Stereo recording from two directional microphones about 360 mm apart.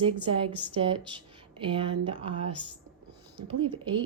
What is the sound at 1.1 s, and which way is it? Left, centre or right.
Speech, centre.